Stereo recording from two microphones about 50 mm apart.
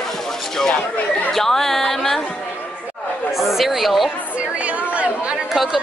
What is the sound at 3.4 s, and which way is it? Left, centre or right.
Speech, centre.